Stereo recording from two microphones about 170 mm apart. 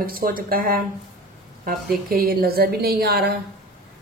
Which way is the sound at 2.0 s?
60° right (ahead or behind).